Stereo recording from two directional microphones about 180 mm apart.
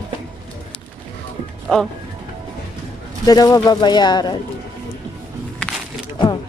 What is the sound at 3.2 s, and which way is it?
Speech, 20° left (ahead or behind).